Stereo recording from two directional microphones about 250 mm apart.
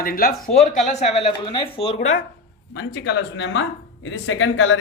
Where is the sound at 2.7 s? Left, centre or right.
Left.